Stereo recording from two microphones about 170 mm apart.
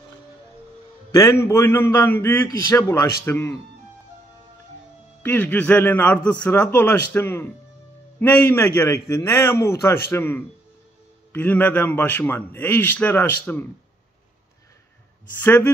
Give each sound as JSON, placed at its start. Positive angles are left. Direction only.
{"t": 1.1, "sound": "a man's voice", "side_deg": 15}
{"t": 5.2, "sound": "a man's voice", "side_deg": 10}
{"t": 15.4, "sound": "a man's voice", "side_deg": 10}